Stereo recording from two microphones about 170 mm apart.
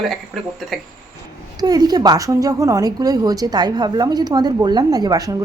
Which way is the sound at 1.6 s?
25° right (ahead or behind).